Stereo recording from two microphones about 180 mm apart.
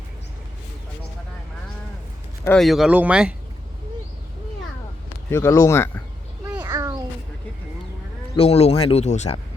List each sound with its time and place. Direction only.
2.4 s speech: 5° left (ahead or behind)
5.3 s speech: 15° left (ahead or behind)
6.6 s a sound: 20° right (ahead or behind)
8.4 s speech: 35° left (ahead or behind)